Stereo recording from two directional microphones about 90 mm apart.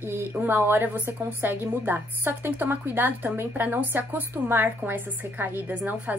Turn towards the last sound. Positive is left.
turn(degrees=-20)  # may be behind; listen again after turning